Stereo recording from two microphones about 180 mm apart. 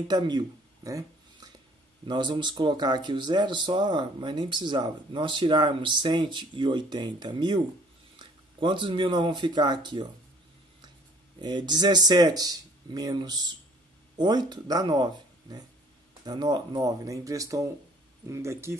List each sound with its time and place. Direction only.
0.1 s a sound: 25° right (ahead or behind)
2.0 s speech: 25° right (ahead or behind)
11.4 s speech: 25° right (ahead or behind)